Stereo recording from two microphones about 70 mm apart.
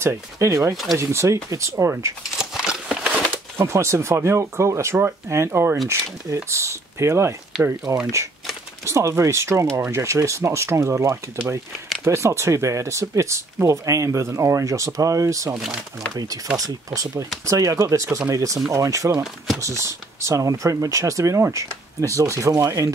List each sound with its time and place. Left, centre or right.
0.0 s speech: right
2.3 s walk: centre
3.0 s a sound: right
3.5 s speech: right